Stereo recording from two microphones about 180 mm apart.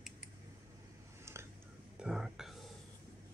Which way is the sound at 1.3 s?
15° right (ahead or behind).